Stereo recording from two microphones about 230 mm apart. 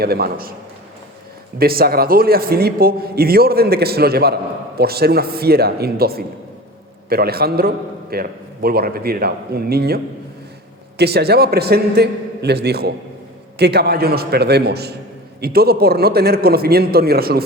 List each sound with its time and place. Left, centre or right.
0.0 s a man's voice: right
1.5 s a man's voice: right